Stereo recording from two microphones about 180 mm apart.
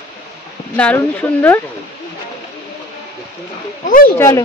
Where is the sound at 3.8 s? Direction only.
50° left (ahead or behind).